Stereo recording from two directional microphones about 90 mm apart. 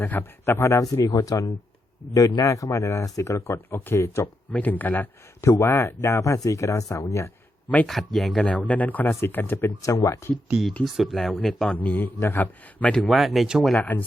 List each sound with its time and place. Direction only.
0.0 s speech: 25° left (ahead or behind)
4.5 s speech: 20° left (ahead or behind)
5.5 s speech: 30° left (ahead or behind)
7.9 s speech: centre (ahead or behind)
8.4 s speech: 15° left (ahead or behind)
9.6 s speech: 40° left (ahead or behind)
10.8 s a man's voice: centre (ahead or behind)
11.8 s speech: 20° left (ahead or behind)
12.9 s speech: centre (ahead or behind)